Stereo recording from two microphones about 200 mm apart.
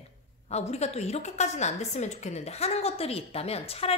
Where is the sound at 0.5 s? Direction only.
35° left (ahead or behind).